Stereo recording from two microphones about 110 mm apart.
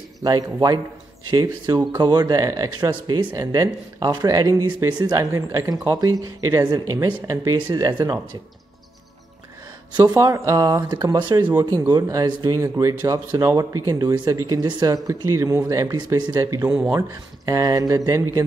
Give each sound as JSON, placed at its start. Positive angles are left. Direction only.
{"t": 0.2, "sound": "speech", "side_deg": -35}
{"t": 5.2, "sound": "speech", "side_deg": -25}
{"t": 9.9, "sound": "speech", "side_deg": -35}
{"t": 16.4, "sound": "speech", "side_deg": -25}